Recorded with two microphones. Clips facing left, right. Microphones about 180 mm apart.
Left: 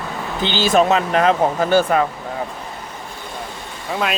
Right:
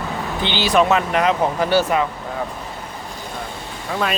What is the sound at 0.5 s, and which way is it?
Speech, 45° left (ahead or behind).